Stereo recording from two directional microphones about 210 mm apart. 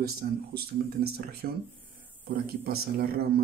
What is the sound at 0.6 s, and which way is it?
A man's voice, 50° right (ahead or behind).